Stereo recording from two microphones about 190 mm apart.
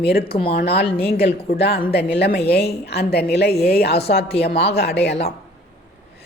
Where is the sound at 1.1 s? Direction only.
55° left (ahead or behind).